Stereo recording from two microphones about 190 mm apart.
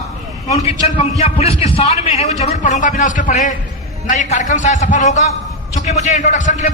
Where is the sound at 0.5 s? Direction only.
30° left (ahead or behind).